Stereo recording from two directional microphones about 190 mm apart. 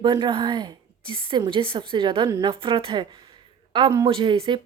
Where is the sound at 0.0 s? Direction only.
25° right (ahead or behind).